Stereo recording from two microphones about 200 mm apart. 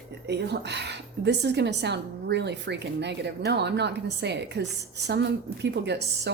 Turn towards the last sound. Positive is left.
turn(degrees=-60)  # may be behind; listen again after turning